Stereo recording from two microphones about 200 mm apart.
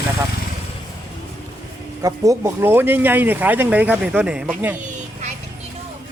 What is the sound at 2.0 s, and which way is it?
Speech, 15° right (ahead or behind).